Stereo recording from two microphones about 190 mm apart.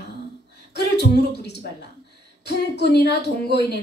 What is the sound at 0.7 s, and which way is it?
A woman's voice, 60° left (ahead or behind).